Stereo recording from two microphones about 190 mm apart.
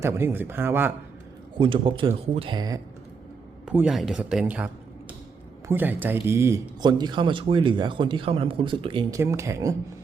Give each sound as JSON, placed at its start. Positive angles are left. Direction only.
{"t": 0.0, "sound": "a man's voice", "side_deg": -15}
{"t": 1.5, "sound": "speech", "side_deg": -25}
{"t": 3.7, "sound": "speech", "side_deg": -5}